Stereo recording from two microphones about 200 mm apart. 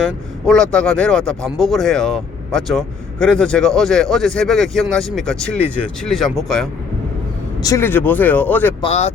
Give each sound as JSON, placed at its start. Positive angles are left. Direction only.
{"t": 0.0, "sound": "speech", "side_deg": 5}
{"t": 7.6, "sound": "speech", "side_deg": 15}
{"t": 8.8, "sound": "speech", "side_deg": 30}